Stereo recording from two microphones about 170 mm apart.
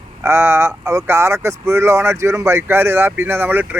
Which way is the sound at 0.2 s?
15° right (ahead or behind).